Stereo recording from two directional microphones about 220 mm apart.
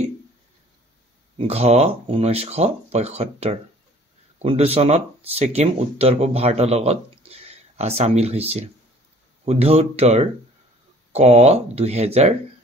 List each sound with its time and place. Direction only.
1.4 s speech: 30° right (ahead or behind)